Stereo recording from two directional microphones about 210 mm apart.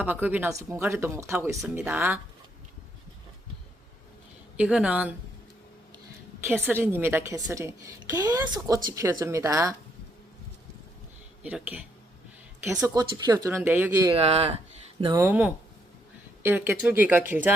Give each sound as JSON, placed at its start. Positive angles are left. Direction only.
{"t": 0.0, "sound": "a woman's voice", "side_deg": -10}
{"t": 4.5, "sound": "speech", "side_deg": -5}
{"t": 6.7, "sound": "a woman's voice", "side_deg": -10}
{"t": 11.4, "sound": "a woman's voice", "side_deg": -5}
{"t": 14.1, "sound": "speech", "side_deg": -30}
{"t": 15.0, "sound": "a woman's voice", "side_deg": -15}